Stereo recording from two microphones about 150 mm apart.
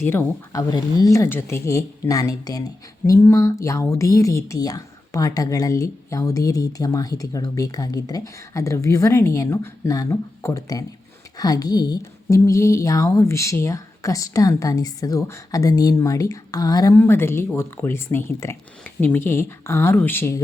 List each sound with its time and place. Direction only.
0.0 s speech: 15° left (ahead or behind)